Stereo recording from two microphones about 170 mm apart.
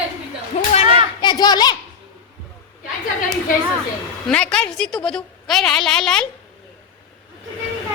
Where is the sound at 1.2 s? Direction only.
25° left (ahead or behind).